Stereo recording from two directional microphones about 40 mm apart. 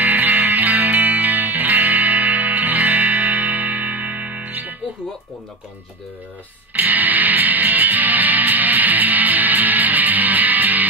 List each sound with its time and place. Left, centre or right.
0.0 s music: right
6.7 s music: right